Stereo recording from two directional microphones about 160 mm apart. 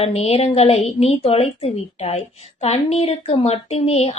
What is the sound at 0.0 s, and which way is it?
A woman's voice, 40° left (ahead or behind).